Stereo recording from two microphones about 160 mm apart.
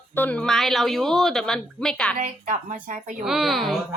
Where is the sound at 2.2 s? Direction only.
50° right (ahead or behind).